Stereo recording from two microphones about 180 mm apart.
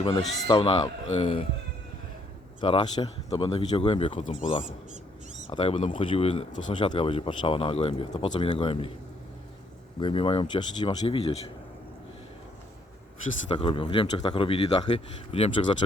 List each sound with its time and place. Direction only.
0.0 s speech: 25° left (ahead or behind)
2.6 s speech: 30° left (ahead or behind)
5.5 s speech: 30° left (ahead or behind)
6.7 s speech: 25° left (ahead or behind)
10.0 s speech: 30° left (ahead or behind)
13.5 s speech: 30° left (ahead or behind)